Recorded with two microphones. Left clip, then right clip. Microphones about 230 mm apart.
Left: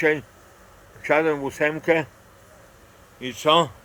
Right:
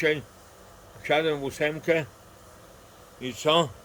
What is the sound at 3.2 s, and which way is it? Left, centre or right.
Speech, centre.